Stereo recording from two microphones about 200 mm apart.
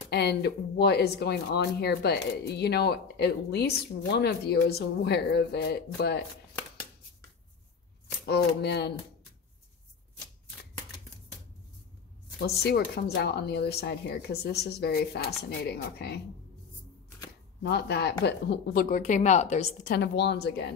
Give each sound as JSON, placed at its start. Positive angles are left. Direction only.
{"t": 0.1, "sound": "speech", "side_deg": 55}
{"t": 8.3, "sound": "speech", "side_deg": 55}
{"t": 12.4, "sound": "speech", "side_deg": 55}
{"t": 17.6, "sound": "speech", "side_deg": 55}
{"t": 19.9, "sound": "speech", "side_deg": 55}